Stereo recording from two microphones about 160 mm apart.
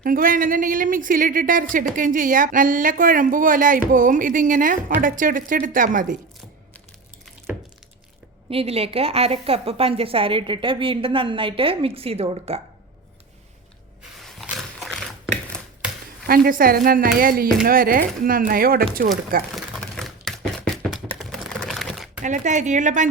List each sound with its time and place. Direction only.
0.0 s speech: 60° right (ahead or behind)
8.4 s a woman's voice: 40° right (ahead or behind)
14.0 s a sound: centre (ahead or behind)
16.2 s speech: 65° right (ahead or behind)
19.5 s a sound: centre (ahead or behind)
21.2 s typing: centre (ahead or behind)
22.2 s a woman's voice: 50° right (ahead or behind)